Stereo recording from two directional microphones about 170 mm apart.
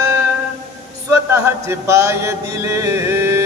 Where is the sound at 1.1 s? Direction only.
15° right (ahead or behind).